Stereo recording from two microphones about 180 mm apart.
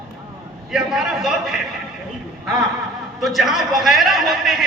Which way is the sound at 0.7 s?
Centre (ahead or behind).